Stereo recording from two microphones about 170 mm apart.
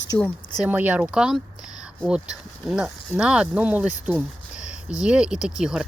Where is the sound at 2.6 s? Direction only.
Centre (ahead or behind).